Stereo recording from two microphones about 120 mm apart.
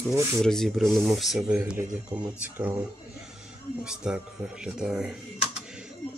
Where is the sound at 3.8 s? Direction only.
5° right (ahead or behind).